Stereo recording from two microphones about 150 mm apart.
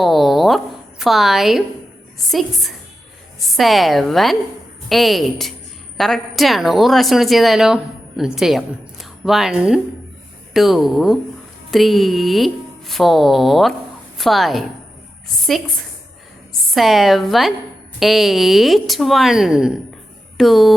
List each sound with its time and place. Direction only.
0.0 s a sound: centre (ahead or behind)
2.1 s a woman's voice: centre (ahead or behind)
16.6 s a woman's voice: centre (ahead or behind)